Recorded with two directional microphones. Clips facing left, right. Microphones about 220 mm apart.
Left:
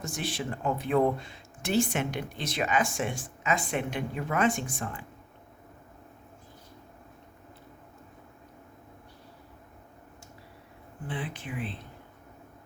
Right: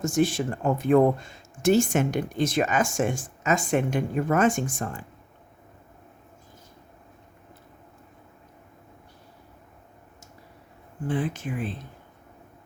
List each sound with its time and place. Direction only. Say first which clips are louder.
0.0 s speech: right 11 dB; 45° right (ahead or behind)
11.1 s speech: right 8 dB; 45° right (ahead or behind)